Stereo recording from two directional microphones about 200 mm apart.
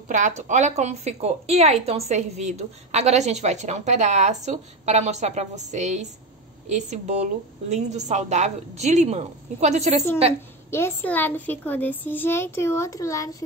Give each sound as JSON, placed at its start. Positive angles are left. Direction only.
{"t": 0.1, "sound": "a woman's voice", "side_deg": -35}
{"t": 10.7, "sound": "a woman's voice", "side_deg": 10}